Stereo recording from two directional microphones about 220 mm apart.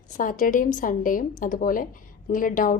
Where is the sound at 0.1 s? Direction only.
35° left (ahead or behind).